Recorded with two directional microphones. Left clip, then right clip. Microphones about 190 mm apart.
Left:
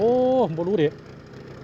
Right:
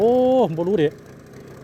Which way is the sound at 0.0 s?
35° right (ahead or behind).